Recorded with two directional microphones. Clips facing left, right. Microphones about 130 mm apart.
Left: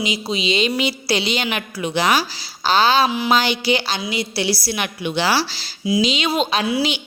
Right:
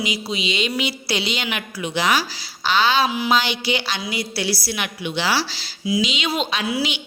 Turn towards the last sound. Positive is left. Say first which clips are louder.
# left 4 dB
turn(degrees=30)  # may be behind; listen again after turning